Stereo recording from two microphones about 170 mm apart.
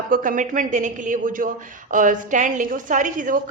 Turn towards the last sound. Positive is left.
turn(degrees=-50)  # may be behind; listen again after turning